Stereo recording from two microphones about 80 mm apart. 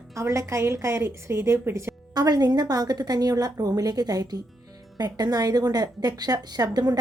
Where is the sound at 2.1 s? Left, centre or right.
Right.